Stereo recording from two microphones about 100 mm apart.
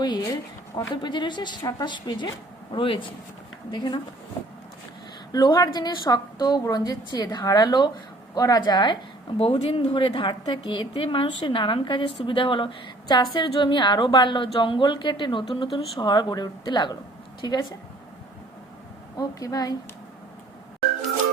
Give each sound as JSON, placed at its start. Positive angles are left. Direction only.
{"t": 0.0, "sound": "a sound", "side_deg": 45}
{"t": 1.0, "sound": "a woman's voice", "side_deg": 50}
{"t": 2.7, "sound": "a woman's voice", "side_deg": 60}
{"t": 3.7, "sound": "a woman's voice", "side_deg": 50}
{"t": 5.3, "sound": "a woman's voice", "side_deg": 40}
{"t": 9.4, "sound": "a woman's voice", "side_deg": 70}
{"t": 19.1, "sound": "a woman's voice", "side_deg": 35}